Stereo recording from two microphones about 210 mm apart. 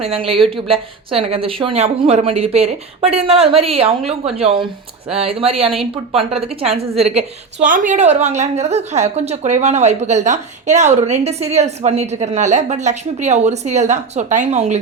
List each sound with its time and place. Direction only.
0.0 s speech: 25° right (ahead or behind)
0.3 s speech: centre (ahead or behind)
0.7 s speech: 25° right (ahead or behind)